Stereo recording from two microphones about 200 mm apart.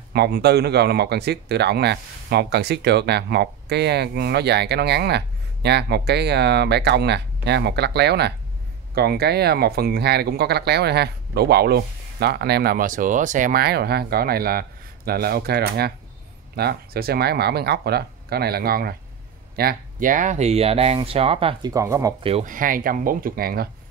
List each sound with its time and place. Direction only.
0.1 s speech: 55° right (ahead or behind); by 21.7 s 25° right (ahead or behind)
21.7 s speech: 15° right (ahead or behind)
22.2 s speech: 30° right (ahead or behind)
22.5 s speech: 45° right (ahead or behind)